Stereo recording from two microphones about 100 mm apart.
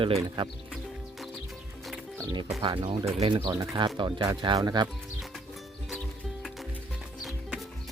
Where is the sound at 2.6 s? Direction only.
55° right (ahead or behind).